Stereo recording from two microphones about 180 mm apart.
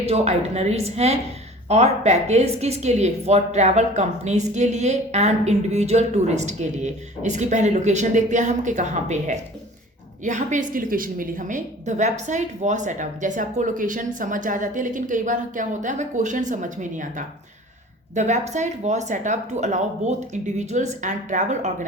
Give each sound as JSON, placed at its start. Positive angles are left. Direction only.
{"t": 0.0, "sound": "a woman's voice", "side_deg": -35}